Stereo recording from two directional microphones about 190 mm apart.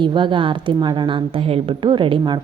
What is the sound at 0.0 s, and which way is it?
A woman's voice, 25° right (ahead or behind).